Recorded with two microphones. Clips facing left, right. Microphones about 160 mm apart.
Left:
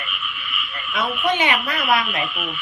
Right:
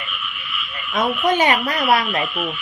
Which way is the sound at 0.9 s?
40° right (ahead or behind).